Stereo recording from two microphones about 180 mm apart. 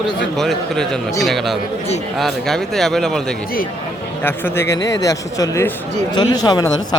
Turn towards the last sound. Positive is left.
turn(degrees=20)  # may be behind; listen again after turning